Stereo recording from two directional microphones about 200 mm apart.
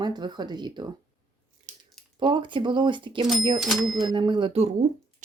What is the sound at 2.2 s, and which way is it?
Speech, 25° right (ahead or behind).